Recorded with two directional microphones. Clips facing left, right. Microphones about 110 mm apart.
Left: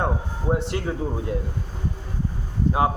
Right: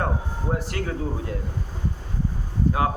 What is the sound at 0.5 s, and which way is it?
Speech, 25° left (ahead or behind).